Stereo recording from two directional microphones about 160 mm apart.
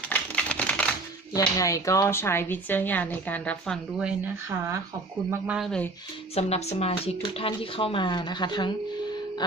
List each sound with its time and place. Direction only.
0.1 s typewriter: 5° left (ahead or behind)
1.3 s speech: 20° left (ahead or behind); by 4.1 s centre (ahead or behind)
5.3 s speech: 5° right (ahead or behind)
6.3 s speech: 40° left (ahead or behind)